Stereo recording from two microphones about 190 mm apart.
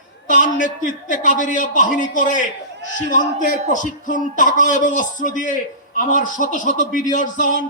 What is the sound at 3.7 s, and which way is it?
Speech, 45° left (ahead or behind).